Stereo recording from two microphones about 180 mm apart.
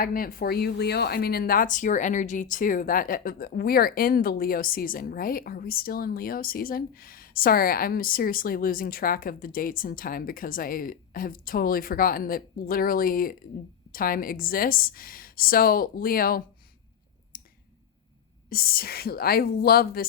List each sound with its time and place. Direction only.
0.0 s speech: 50° left (ahead or behind)
17.3 s finger snapping: 55° left (ahead or behind)
18.4 s speech: 55° left (ahead or behind)